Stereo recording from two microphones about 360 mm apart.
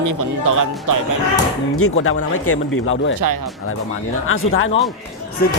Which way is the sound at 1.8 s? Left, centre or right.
Left.